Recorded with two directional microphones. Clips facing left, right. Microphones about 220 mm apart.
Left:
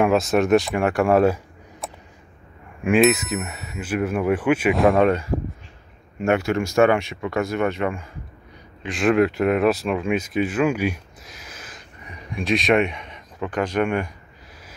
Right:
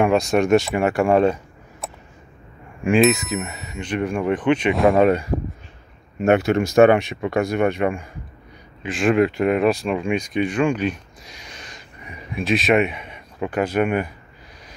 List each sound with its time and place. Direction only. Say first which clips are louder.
0.0 s speech: right 1 dB; centre (ahead or behind)
6.2 s speech: right 4 dB; 20° right (ahead or behind)
8.8 s speech: right 1 dB; centre (ahead or behind)